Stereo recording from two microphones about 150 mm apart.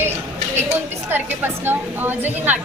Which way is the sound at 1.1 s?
15° right (ahead or behind).